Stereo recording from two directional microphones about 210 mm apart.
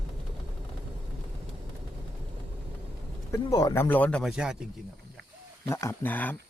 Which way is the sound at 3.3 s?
15° left (ahead or behind).